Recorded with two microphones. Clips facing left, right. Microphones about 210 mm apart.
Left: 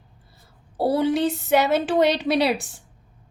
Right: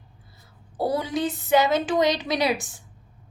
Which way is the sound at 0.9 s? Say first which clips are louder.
Left 5 dB; 65° left (ahead or behind).